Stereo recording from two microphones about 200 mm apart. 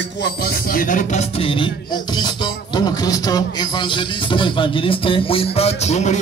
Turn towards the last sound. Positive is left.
turn(degrees=35)  # may be behind; listen again after turning